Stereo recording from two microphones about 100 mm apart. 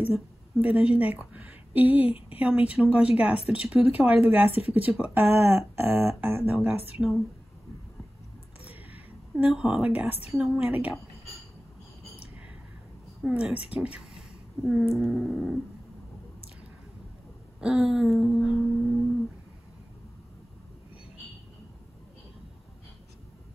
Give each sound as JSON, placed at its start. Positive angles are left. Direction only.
{"t": 0.0, "sound": "a woman's voice", "side_deg": -15}
{"t": 2.0, "sound": "speech", "side_deg": 75}
{"t": 2.3, "sound": "a woman's voice", "side_deg": -10}
{"t": 7.0, "sound": "a sound", "side_deg": 0}
{"t": 8.6, "sound": "a sound", "side_deg": -15}
{"t": 9.5, "sound": "a woman's voice", "side_deg": -10}
{"t": 13.2, "sound": "a woman's voice", "side_deg": -10}
{"t": 14.6, "sound": "a sound", "side_deg": -5}
{"t": 17.6, "sound": "a woman's voice", "side_deg": -10}